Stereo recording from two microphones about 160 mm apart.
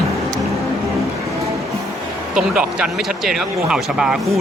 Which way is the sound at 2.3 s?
5° right (ahead or behind).